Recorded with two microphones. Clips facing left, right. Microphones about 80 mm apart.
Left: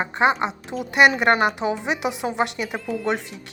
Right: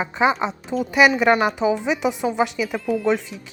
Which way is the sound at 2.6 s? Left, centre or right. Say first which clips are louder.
Right 4 dB; centre.